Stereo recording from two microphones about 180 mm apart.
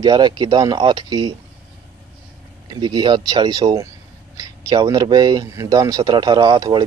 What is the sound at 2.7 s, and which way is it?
Speech, 25° right (ahead or behind).